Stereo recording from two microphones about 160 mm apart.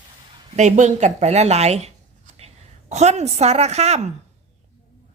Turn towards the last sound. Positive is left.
turn(degrees=-40)  # may be behind; listen again after turning